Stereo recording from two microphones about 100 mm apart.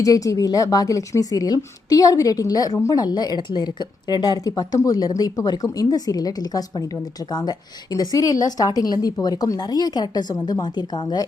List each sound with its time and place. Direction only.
0.0 s speech: 35° left (ahead or behind)